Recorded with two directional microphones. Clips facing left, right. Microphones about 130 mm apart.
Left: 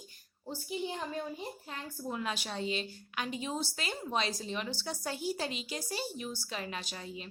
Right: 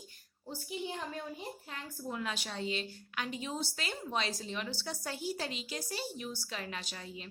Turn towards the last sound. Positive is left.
turn(degrees=20)  # may be behind; listen again after turning